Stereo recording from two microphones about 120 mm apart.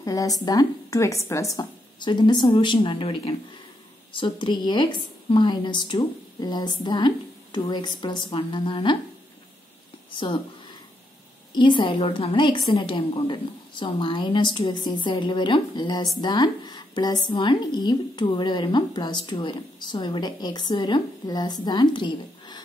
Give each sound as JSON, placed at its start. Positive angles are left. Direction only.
{"t": 0.0, "sound": "a woman's voice", "side_deg": 30}
{"t": 10.1, "sound": "a woman's voice", "side_deg": 40}
{"t": 11.5, "sound": "a woman's voice", "side_deg": 40}